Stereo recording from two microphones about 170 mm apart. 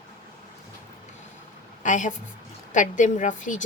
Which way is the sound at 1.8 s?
45° left (ahead or behind).